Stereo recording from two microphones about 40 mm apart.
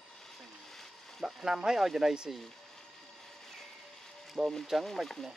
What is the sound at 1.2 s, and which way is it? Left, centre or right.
Speech, centre.